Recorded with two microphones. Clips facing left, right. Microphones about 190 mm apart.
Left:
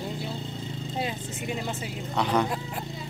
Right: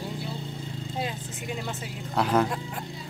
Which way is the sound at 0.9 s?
Centre (ahead or behind).